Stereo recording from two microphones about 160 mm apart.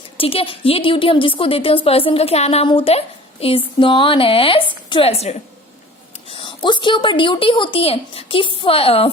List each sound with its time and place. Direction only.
0.2 s a woman's voice: 35° left (ahead or behind)